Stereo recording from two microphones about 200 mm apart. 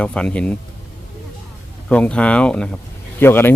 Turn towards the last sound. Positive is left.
turn(degrees=10)  # may be behind; listen again after turning